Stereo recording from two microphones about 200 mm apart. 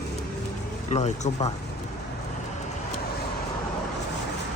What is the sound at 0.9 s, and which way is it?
Speech, 35° left (ahead or behind).